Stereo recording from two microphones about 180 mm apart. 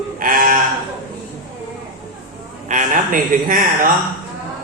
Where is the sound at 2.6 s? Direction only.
45° right (ahead or behind).